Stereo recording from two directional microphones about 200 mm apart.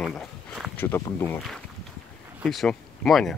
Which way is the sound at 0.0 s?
Centre (ahead or behind).